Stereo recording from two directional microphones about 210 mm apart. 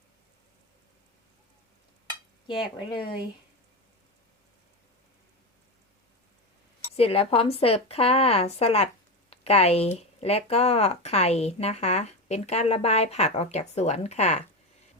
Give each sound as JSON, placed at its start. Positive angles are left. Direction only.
{"t": 2.5, "sound": "speech", "side_deg": 20}
{"t": 6.9, "sound": "speech", "side_deg": 30}